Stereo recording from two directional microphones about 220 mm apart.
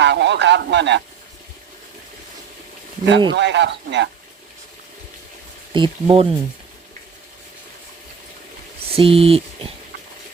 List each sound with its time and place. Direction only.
0.0 s a man's voice: 50° right (ahead or behind)
3.1 s speech: 60° right (ahead or behind)
5.7 s speech: 25° right (ahead or behind)
8.9 s speech: 25° right (ahead or behind)